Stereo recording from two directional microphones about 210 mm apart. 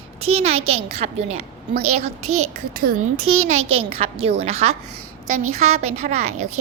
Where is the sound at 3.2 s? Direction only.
90° right.